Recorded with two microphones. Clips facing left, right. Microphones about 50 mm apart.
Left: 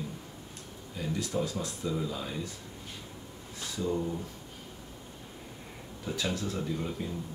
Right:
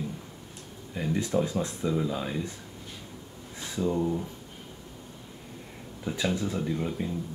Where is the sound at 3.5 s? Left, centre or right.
Right.